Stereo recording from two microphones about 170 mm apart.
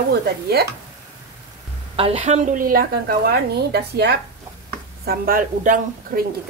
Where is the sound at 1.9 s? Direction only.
35° right (ahead or behind); by 4.1 s 75° right (ahead or behind).